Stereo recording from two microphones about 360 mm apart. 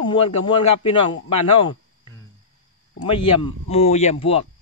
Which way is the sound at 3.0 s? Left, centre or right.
Centre.